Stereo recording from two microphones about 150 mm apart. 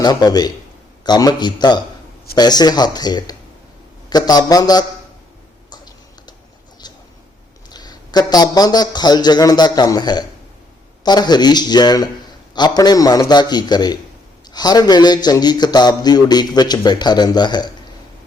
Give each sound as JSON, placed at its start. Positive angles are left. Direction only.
{"t": 0.0, "sound": "speech", "side_deg": 25}
{"t": 5.7, "sound": "a sound", "side_deg": 30}
{"t": 7.7, "sound": "speech", "side_deg": 25}